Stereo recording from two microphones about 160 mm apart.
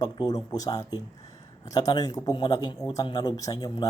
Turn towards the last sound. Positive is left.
turn(degrees=25)  # may be behind; listen again after turning